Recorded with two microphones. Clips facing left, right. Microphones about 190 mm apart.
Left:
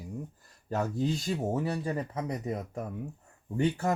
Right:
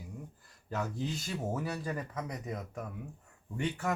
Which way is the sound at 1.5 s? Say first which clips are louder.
Left 5 dB; 25° left (ahead or behind).